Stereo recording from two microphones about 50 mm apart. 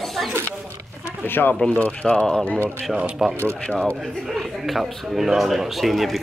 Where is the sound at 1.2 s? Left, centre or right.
Left.